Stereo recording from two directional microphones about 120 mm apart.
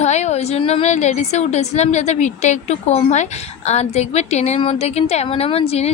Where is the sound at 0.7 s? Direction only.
65° left (ahead or behind).